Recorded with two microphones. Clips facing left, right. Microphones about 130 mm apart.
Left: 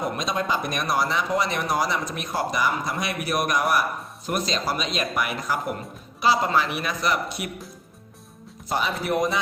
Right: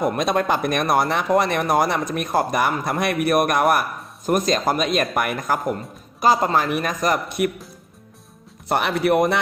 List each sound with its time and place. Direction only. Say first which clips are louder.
0.0 s a man's voice: right 6 dB; 55° right (ahead or behind)
8.7 s speech: right 6 dB; 65° right (ahead or behind)